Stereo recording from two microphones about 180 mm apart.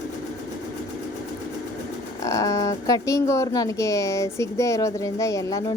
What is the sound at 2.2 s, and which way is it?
A woman's voice, 15° left (ahead or behind).